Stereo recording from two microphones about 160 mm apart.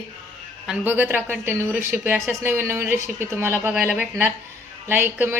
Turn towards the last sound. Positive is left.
turn(degrees=-10)  # may be behind; listen again after turning